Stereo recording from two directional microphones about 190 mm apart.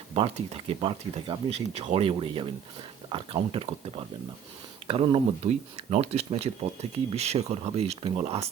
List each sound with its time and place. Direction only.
0.1 s speech: 30° right (ahead or behind)